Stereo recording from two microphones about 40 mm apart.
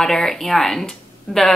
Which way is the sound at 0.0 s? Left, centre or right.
Centre.